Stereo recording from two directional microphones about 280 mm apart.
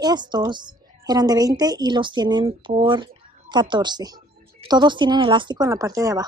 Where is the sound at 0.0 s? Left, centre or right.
Centre.